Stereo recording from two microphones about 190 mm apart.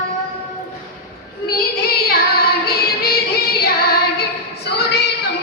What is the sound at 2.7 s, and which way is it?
Music, 55° left (ahead or behind).